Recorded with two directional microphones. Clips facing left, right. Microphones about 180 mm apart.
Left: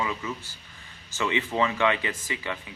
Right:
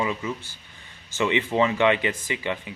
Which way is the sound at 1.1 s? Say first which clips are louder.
Right 4 dB; 20° right (ahead or behind).